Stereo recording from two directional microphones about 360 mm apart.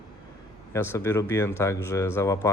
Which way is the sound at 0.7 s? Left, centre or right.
Centre.